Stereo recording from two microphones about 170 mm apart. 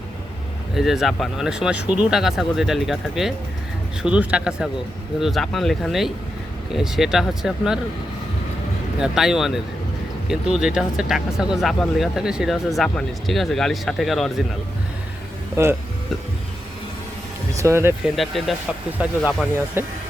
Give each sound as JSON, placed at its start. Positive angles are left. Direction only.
{"t": 0.8, "sound": "speech", "side_deg": 0}
{"t": 9.0, "sound": "speech", "side_deg": -5}
{"t": 15.6, "sound": "speech", "side_deg": -15}
{"t": 17.5, "sound": "speech", "side_deg": -15}
{"t": 18.0, "sound": "speech", "side_deg": 0}